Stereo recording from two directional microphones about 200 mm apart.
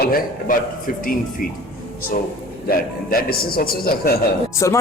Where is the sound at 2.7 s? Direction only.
50° left (ahead or behind).